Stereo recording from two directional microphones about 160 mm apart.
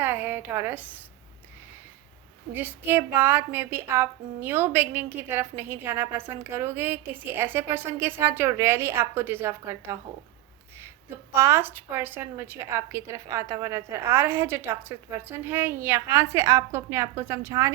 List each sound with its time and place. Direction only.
0.0 s a woman's voice: 10° right (ahead or behind)
2.5 s a woman's voice: 10° right (ahead or behind)